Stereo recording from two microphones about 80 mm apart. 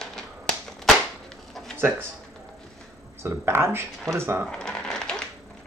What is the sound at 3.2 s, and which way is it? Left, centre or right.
Speech, right.